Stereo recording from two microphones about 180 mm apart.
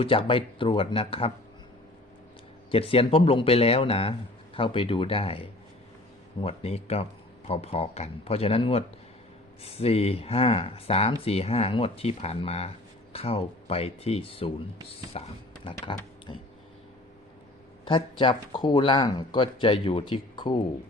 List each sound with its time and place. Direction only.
0.0 s speech: 30° left (ahead or behind)
2.7 s speech: 30° left (ahead or behind)
17.8 s speech: 25° left (ahead or behind)